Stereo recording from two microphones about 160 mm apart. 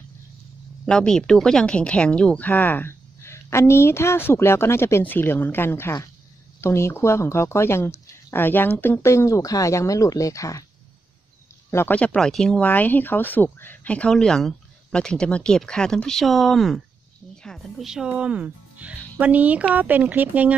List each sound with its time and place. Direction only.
0.8 s speech: 5° left (ahead or behind); by 10.6 s 20° left (ahead or behind)
11.7 s speech: 10° left (ahead or behind); by 20.5 s 10° right (ahead or behind)